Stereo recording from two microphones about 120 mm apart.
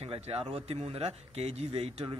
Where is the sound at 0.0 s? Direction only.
55° right (ahead or behind).